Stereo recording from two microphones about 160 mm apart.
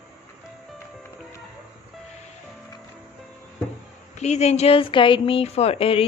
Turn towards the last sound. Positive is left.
turn(degrees=35)  # may be behind; listen again after turning